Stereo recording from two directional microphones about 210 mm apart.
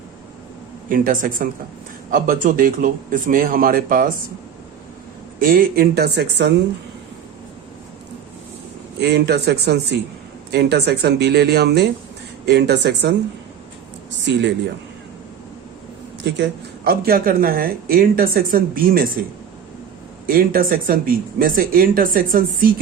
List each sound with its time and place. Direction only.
0.9 s a man's voice: 40° right (ahead or behind)
5.4 s speech: 45° right (ahead or behind)
9.0 s speech: 55° right (ahead or behind)
16.2 s speech: 50° right (ahead or behind)
20.2 s speech: 45° right (ahead or behind)